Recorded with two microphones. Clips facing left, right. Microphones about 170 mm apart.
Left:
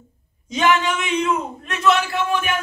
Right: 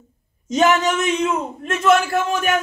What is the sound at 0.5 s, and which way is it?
A man's voice, 45° right (ahead or behind).